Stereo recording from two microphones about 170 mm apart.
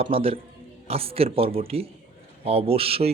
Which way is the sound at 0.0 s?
35° right (ahead or behind).